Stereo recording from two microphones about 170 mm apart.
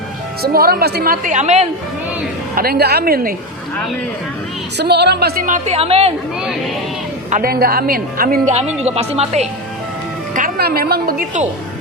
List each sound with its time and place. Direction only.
0.4 s a woman's voice: 65° right (ahead or behind); by 1.6 s 45° right (ahead or behind)
2.6 s a woman's voice: 65° right (ahead or behind)
4.8 s a woman's voice: 75° right (ahead or behind)
5.5 s speech: 40° right (ahead or behind)
7.3 s a woman's voice: 55° right (ahead or behind)
8.5 s speech: 40° right (ahead or behind)
10.3 s a woman's voice: 60° right (ahead or behind)